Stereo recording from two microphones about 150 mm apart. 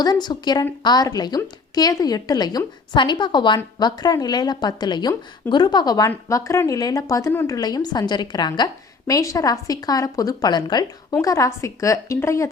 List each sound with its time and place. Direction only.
0.0 s speech: 25° left (ahead or behind)